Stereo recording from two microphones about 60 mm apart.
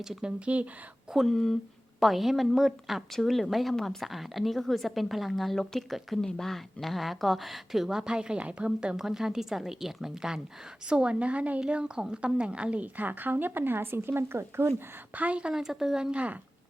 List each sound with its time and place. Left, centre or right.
0.0 s speech: centre
1.1 s a woman's voice: centre; by 14.7 s right
15.1 s speech: right
15.5 s speech: centre
16.1 s speech: right